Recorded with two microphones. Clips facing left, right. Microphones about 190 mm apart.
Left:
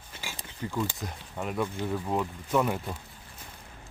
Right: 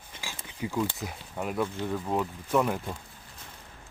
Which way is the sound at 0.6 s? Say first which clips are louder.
Right 2 dB; 10° right (ahead or behind).